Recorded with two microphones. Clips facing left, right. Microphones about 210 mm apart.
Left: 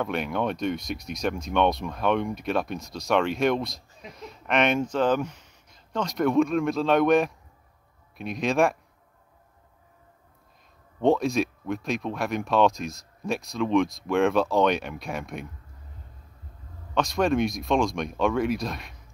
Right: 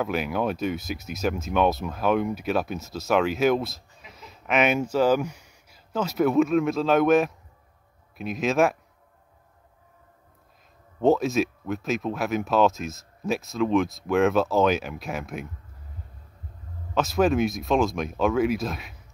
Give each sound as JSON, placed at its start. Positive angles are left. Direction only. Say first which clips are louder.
{"t": 0.0, "sound": "speech", "louder": "right 1 dB", "side_deg": -5}
{"t": 11.0, "sound": "speech", "louder": "right 1 dB", "side_deg": 0}
{"t": 16.9, "sound": "speech", "louder": "right 2 dB", "side_deg": -5}